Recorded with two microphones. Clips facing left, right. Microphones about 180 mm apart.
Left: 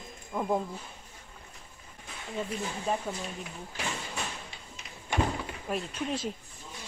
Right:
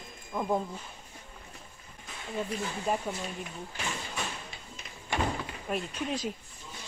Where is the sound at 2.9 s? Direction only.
5° right (ahead or behind).